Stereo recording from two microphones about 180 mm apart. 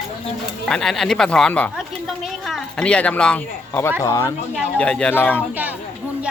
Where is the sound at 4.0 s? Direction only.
20° left (ahead or behind).